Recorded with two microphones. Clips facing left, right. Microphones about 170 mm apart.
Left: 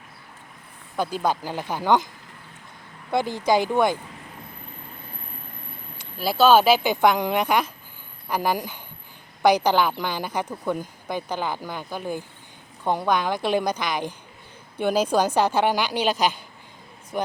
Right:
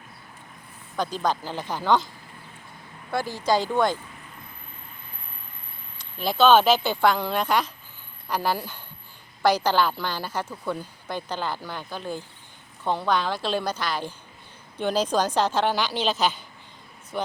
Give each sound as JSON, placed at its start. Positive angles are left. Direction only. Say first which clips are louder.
{"t": 0.9, "sound": "speech", "louder": "left 2 dB", "side_deg": 10}
{"t": 3.1, "sound": "speech", "louder": "left 3 dB", "side_deg": 20}
{"t": 6.1, "sound": "speech", "louder": "left 1 dB", "side_deg": 5}